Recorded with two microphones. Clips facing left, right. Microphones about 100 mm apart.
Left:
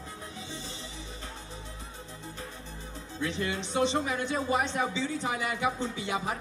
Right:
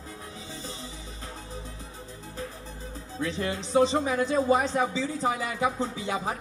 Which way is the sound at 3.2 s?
35° right (ahead or behind).